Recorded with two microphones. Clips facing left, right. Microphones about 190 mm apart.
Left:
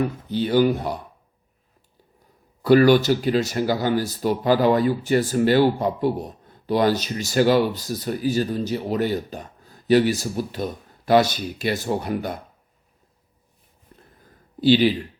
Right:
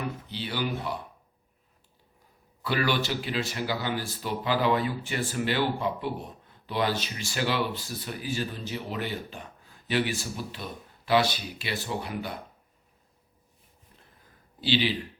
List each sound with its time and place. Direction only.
0.0 s speech: 45° left (ahead or behind)
2.6 s speech: 45° left (ahead or behind)
14.6 s speech: 45° left (ahead or behind)